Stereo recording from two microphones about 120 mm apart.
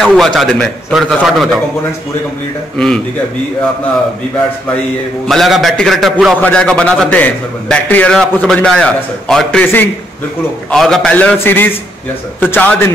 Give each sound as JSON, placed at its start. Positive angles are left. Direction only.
{"t": 0.0, "sound": "a man's voice", "side_deg": 0}
{"t": 5.3, "sound": "a man's voice", "side_deg": 0}
{"t": 10.7, "sound": "a man's voice", "side_deg": 5}